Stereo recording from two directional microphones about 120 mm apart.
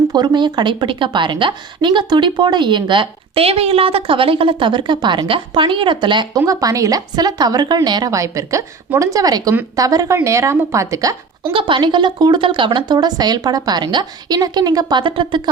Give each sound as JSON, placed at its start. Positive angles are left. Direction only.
{"t": 0.1, "sound": "a woman's voice", "side_deg": -35}
{"t": 6.4, "sound": "a woman's voice", "side_deg": -30}
{"t": 11.5, "sound": "a woman's voice", "side_deg": -45}